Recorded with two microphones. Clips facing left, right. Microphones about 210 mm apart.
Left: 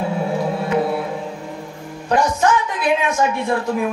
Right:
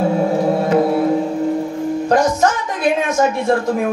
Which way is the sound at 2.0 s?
45° right (ahead or behind).